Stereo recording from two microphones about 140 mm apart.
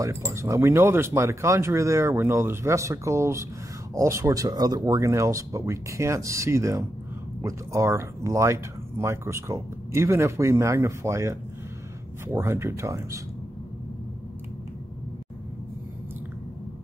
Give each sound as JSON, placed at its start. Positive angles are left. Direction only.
{"t": 0.0, "sound": "speech", "side_deg": -20}